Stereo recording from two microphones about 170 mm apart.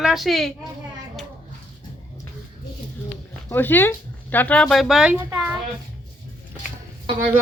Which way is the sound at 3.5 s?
10° left (ahead or behind).